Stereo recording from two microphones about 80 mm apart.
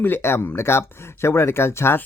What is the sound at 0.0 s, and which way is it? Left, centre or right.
Speech, left.